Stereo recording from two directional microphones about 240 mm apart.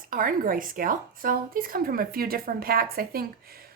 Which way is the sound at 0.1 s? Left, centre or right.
Right.